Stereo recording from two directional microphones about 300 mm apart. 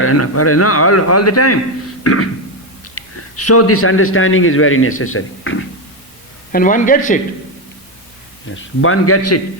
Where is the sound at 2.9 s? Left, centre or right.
Left.